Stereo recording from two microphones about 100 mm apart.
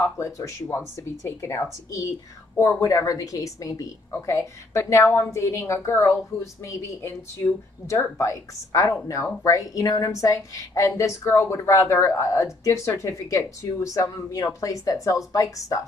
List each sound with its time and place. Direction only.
0.0 s a woman's voice: 30° left (ahead or behind)